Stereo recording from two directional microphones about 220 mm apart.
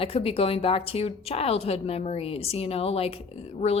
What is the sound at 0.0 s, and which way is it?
A woman's voice, 25° left (ahead or behind).